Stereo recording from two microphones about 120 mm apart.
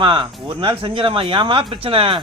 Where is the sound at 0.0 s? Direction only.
45° right (ahead or behind).